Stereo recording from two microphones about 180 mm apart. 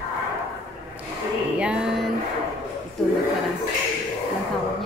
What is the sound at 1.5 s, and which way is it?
Music, 5° right (ahead or behind).